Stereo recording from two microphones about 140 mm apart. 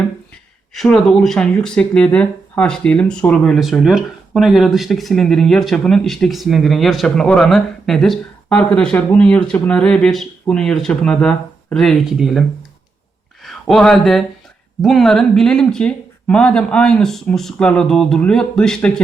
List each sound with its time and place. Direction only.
0.7 s speech: centre (ahead or behind)